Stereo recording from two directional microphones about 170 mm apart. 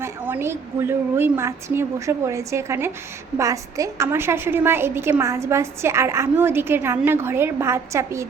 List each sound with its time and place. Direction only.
0.0 s a woman's voice: 15° right (ahead or behind)